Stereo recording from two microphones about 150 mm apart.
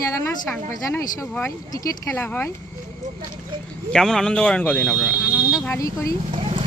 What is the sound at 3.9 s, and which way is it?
Speech, 5° left (ahead or behind).